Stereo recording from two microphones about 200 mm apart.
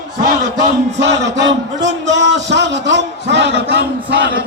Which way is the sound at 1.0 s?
60° right (ahead or behind).